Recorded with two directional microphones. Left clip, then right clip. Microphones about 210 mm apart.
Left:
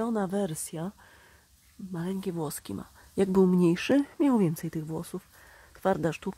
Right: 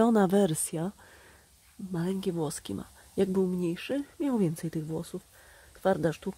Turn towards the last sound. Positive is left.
turn(degrees=5)  # may be behind; listen again after turning